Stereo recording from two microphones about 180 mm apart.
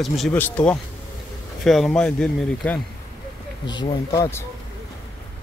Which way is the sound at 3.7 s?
15° left (ahead or behind).